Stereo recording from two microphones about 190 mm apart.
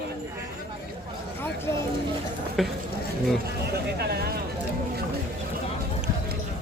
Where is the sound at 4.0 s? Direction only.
55° right (ahead or behind).